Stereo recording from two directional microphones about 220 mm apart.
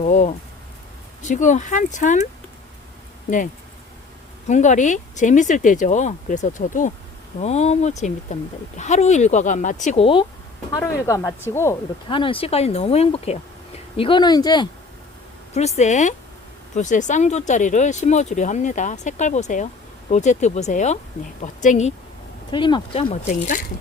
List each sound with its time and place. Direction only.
0.0 s speech: 30° left (ahead or behind)
3.2 s speech: 35° left (ahead or behind)
10.7 s speech: 15° left (ahead or behind)
12.0 s speech: 25° left (ahead or behind)
15.5 s speech: 30° left (ahead or behind)
22.5 s speech: 20° left (ahead or behind)